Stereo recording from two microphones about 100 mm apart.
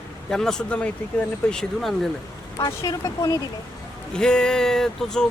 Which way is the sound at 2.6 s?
40° left (ahead or behind).